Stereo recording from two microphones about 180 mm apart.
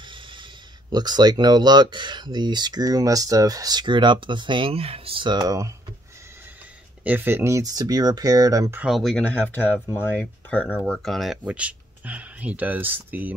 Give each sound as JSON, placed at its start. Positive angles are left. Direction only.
{"t": 0.0, "sound": "speech", "side_deg": -25}
{"t": 7.1, "sound": "speech", "side_deg": -10}
{"t": 8.8, "sound": "speech", "side_deg": 0}